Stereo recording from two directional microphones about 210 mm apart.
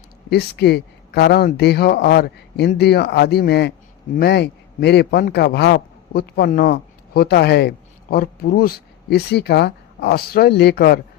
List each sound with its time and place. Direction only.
0.3 s a man's voice: 50° left (ahead or behind)